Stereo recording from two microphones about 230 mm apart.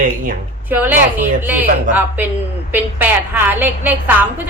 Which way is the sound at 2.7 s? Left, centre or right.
Centre.